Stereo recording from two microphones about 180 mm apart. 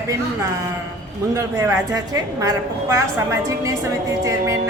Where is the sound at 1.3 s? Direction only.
15° right (ahead or behind).